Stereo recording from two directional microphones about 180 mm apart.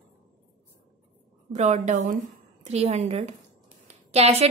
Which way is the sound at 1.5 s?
40° right (ahead or behind).